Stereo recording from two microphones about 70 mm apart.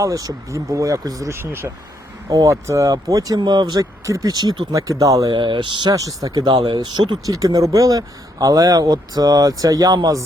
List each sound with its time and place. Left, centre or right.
0.0 s speech: right
1.3 s speech: right
2.3 s speech: right
2.9 s speech: right
4.7 s speech: right
5.4 s speech: right
6.0 s speech: right
7.3 s speech: right